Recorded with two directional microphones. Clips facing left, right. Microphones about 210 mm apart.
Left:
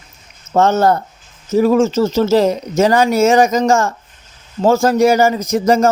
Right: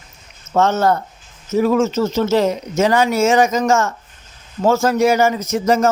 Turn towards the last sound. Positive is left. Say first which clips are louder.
# left 3 dB
turn(degrees=35)  # may be behind; listen again after turning